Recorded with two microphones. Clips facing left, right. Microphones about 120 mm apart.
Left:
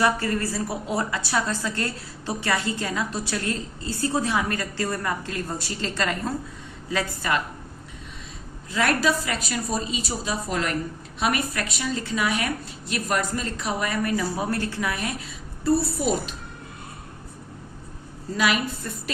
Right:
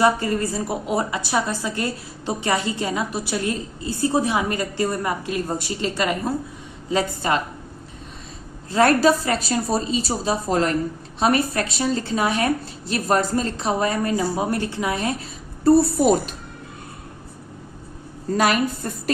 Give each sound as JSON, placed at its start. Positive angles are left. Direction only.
{"t": 0.0, "sound": "a woman's voice", "side_deg": -20}
{"t": 6.9, "sound": "a woman's voice", "side_deg": -30}
{"t": 8.7, "sound": "a woman's voice", "side_deg": -35}
{"t": 15.6, "sound": "a woman's voice", "side_deg": -50}
{"t": 18.3, "sound": "a woman's voice", "side_deg": -45}